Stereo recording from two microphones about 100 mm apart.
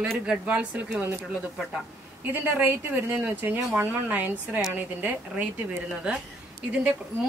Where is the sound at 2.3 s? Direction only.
20° right (ahead or behind).